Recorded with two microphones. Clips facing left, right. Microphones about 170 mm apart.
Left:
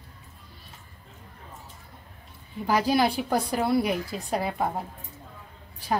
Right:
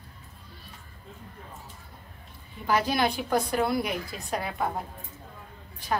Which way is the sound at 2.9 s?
35° left (ahead or behind).